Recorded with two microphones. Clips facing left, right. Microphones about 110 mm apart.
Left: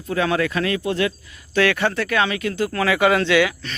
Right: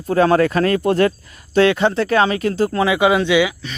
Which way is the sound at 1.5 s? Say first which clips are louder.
Right 5 dB; 25° right (ahead or behind).